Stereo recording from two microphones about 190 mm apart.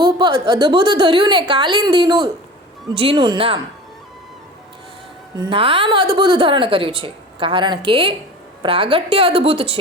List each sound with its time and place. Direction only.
0.0 s a woman's voice: 25° right (ahead or behind)
5.4 s a woman's voice: 30° right (ahead or behind)